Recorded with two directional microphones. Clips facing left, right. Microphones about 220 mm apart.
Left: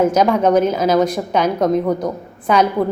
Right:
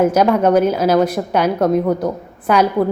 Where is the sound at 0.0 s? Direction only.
10° right (ahead or behind).